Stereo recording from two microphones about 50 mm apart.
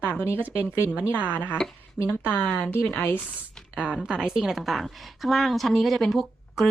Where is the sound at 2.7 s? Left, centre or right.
Left.